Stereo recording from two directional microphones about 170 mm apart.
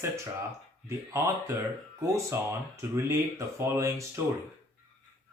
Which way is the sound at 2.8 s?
15° right (ahead or behind).